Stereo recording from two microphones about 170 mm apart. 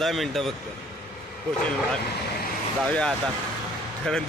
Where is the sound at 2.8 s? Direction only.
5° left (ahead or behind).